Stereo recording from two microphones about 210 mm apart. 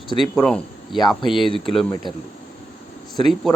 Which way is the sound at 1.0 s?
20° left (ahead or behind).